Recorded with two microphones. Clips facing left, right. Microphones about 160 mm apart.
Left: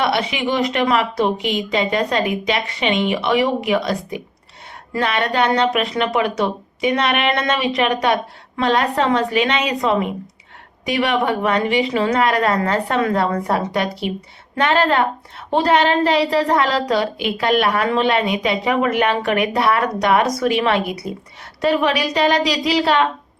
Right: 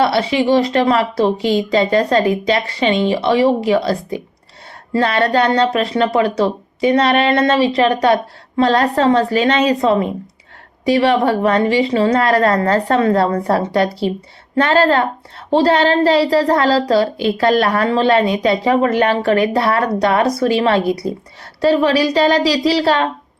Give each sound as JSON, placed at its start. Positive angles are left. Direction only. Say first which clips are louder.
{"t": 0.0, "sound": "a child's voice", "louder": "right 5 dB", "side_deg": -30}